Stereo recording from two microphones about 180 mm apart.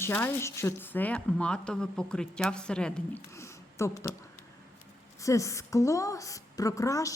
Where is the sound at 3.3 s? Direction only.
15° left (ahead or behind).